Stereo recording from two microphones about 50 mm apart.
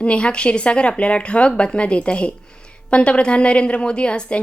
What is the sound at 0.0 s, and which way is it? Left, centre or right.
A woman's voice, left.